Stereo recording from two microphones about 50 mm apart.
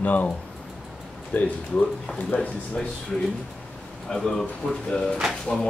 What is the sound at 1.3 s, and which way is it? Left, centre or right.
Speech, left.